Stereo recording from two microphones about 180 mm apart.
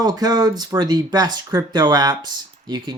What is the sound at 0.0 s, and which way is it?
Speech, 20° right (ahead or behind).